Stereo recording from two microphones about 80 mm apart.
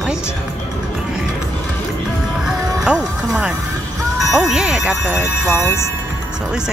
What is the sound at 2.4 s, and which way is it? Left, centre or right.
Music, centre.